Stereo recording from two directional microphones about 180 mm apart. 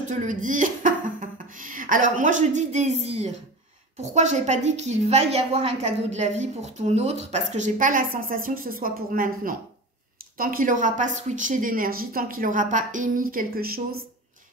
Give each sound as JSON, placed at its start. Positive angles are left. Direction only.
{"t": 0.1, "sound": "a woman's voice", "side_deg": -45}